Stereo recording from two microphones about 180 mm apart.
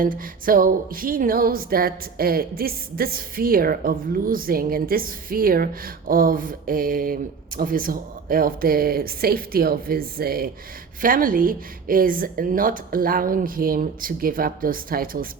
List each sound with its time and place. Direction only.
0.0 s speech: 50° right (ahead or behind)